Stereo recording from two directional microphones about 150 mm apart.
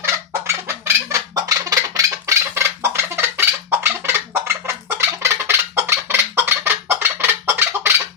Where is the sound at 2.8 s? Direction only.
15° right (ahead or behind).